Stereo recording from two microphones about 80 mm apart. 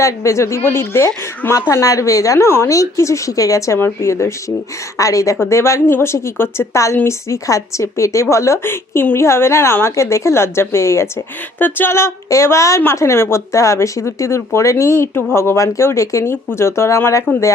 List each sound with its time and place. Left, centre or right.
0.0 s a woman's voice: left
1.7 s a woman's voice: left
3.8 s a woman's voice: left